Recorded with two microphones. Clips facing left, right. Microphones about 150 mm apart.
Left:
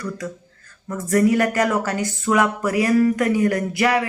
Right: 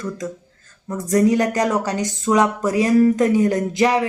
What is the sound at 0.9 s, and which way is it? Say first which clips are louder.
A woman's voice: right 1 dB; 20° right (ahead or behind).